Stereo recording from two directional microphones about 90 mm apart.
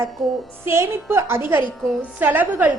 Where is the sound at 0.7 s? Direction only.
30° right (ahead or behind).